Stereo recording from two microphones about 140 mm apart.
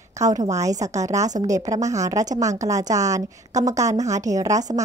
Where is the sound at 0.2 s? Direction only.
25° right (ahead or behind).